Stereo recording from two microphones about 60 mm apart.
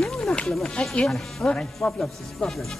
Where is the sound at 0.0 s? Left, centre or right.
Centre.